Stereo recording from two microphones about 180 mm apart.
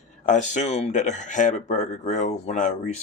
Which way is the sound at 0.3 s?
40° left (ahead or behind).